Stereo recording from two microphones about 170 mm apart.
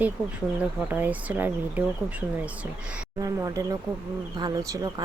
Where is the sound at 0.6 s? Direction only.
10° right (ahead or behind).